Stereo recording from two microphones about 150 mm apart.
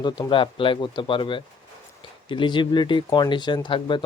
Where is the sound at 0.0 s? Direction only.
30° left (ahead or behind).